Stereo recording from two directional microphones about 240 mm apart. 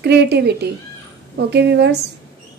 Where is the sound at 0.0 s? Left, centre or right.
Right.